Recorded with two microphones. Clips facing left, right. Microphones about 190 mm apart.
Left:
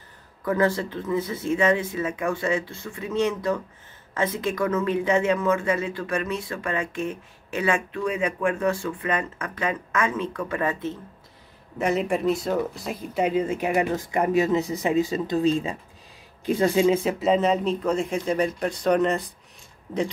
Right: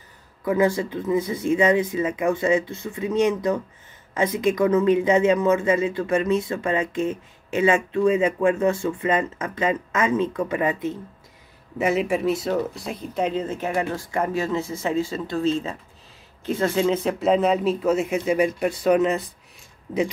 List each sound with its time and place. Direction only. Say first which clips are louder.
0.5 s speech: right 2 dB; 15° right (ahead or behind)
11.8 s speech: right 2 dB; 5° right (ahead or behind)